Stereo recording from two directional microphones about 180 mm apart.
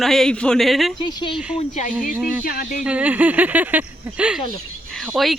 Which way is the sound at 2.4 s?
55° left (ahead or behind).